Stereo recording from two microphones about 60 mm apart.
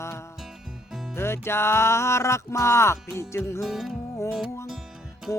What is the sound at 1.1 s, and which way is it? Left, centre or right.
Music, left.